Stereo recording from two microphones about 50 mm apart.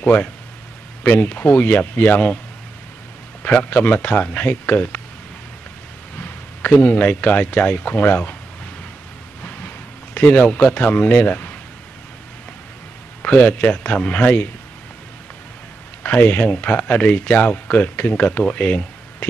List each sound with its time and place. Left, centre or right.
0.0 s speech: left
3.4 s speech: left
6.1 s a sound: left
6.8 s speech: left
10.1 s speech: left
13.2 s speech: left
16.0 s speech: left